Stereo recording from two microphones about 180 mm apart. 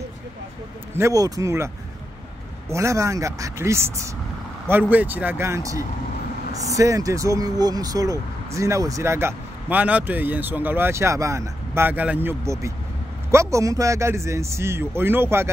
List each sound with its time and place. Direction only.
0.9 s speech: 15° right (ahead or behind)
2.7 s speech: 15° right (ahead or behind)